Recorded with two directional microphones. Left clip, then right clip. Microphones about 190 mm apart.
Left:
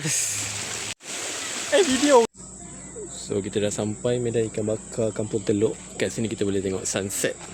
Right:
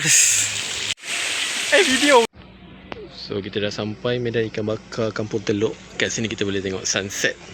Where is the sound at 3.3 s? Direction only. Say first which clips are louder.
Even; 15° left (ahead or behind).